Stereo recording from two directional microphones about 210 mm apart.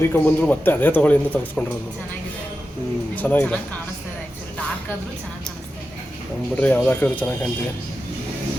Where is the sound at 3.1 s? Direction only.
5° left (ahead or behind).